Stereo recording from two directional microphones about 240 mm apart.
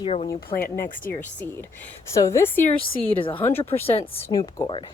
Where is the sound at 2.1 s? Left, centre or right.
Centre.